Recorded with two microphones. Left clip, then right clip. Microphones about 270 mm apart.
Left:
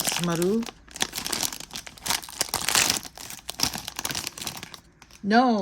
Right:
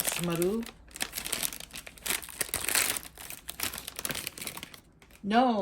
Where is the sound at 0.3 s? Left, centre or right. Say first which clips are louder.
Left 3 dB; left.